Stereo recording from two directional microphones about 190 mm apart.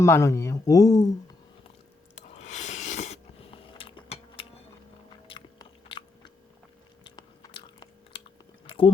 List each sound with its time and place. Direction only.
0.0 s speech: 15° left (ahead or behind)
2.3 s a sound: 35° left (ahead or behind)
5.3 s biting: 25° left (ahead or behind)